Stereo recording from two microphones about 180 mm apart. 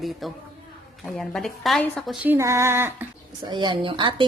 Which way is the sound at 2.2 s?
15° right (ahead or behind).